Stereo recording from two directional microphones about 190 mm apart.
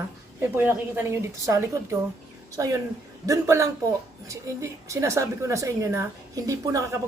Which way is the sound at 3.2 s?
15° right (ahead or behind).